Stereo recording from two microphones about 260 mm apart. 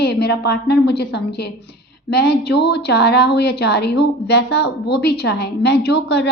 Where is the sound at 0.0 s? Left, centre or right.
Left.